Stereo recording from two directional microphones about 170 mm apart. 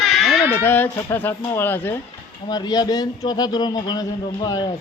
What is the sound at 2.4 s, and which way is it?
A man's voice, 25° left (ahead or behind).